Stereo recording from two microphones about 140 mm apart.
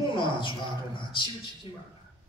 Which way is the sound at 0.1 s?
35° left (ahead or behind).